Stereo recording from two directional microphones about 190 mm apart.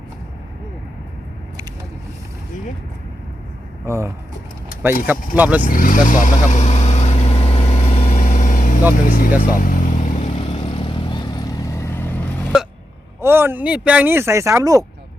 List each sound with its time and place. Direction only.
3.8 s speech: 15° right (ahead or behind)
5.6 s vehicle: 45° left (ahead or behind)
9.0 s speech: 50° left (ahead or behind)
9.6 s vehicle: 45° left (ahead or behind); by 12.5 s 10° left (ahead or behind)
13.2 s speech: 10° right (ahead or behind)